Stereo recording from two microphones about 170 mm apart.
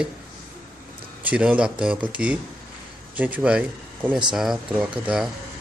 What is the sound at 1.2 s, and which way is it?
Speech, 10° right (ahead or behind).